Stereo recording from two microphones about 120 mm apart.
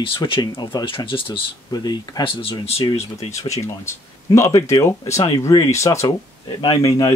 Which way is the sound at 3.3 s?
25° left (ahead or behind).